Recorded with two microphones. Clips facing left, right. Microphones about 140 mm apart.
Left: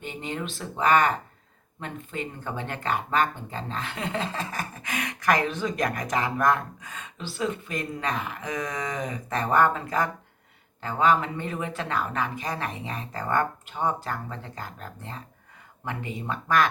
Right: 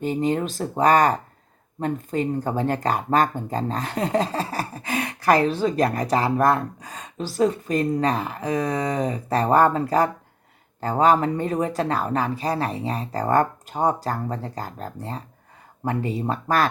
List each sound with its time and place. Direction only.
0.0 s speech: 40° right (ahead or behind)